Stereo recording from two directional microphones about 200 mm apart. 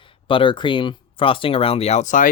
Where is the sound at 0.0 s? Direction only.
25° left (ahead or behind).